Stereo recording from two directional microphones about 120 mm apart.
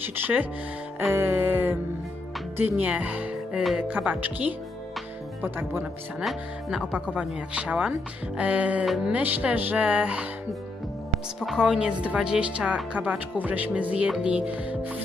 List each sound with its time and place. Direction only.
0.0 s speech: 15° right (ahead or behind)
0.9 s music: 20° right (ahead or behind)
2.5 s speech: 15° right (ahead or behind)
5.4 s music: 20° right (ahead or behind)
6.2 s speech: 5° right (ahead or behind)
8.8 s speech: centre (ahead or behind)
9.1 s speech: 10° right (ahead or behind)
11.4 s speech: 5° right (ahead or behind)